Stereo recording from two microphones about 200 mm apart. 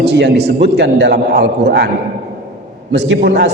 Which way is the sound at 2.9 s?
60° right (ahead or behind).